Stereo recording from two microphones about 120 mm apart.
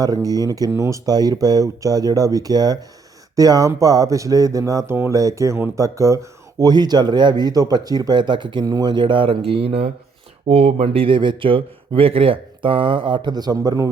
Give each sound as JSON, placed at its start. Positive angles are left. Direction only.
{"t": 0.0, "sound": "speech", "side_deg": -30}